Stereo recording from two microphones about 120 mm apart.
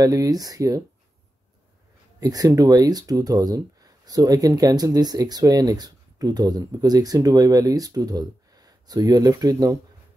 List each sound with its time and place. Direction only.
0.0 s speech: 30° right (ahead or behind)
2.1 s speech: 30° right (ahead or behind)